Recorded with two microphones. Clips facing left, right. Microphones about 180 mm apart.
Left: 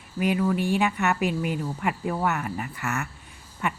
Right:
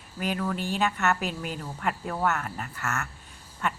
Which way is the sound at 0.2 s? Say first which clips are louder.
Left 6 dB; 10° left (ahead or behind).